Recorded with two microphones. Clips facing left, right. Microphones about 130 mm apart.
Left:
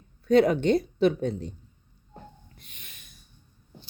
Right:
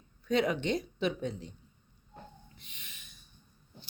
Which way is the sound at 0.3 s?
40° left (ahead or behind).